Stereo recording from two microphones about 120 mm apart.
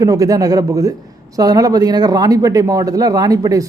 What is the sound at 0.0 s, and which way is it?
A man's voice, 30° right (ahead or behind).